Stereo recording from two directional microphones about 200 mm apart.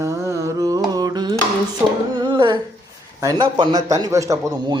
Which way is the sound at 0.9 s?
20° right (ahead or behind).